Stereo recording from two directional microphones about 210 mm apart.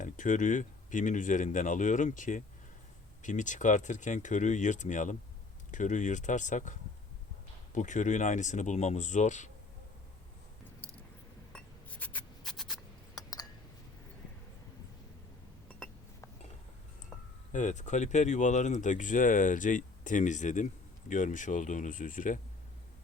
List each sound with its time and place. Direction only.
0.0 s speech: 35° left (ahead or behind)
11.5 s a sound: 5° left (ahead or behind)
17.5 s speech: 35° left (ahead or behind)